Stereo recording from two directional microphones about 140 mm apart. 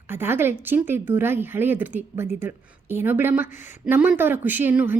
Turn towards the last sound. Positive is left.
turn(degrees=-15)  # may be behind; listen again after turning